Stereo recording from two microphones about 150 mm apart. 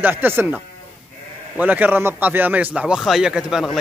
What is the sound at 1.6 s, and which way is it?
A man's voice, 10° right (ahead or behind).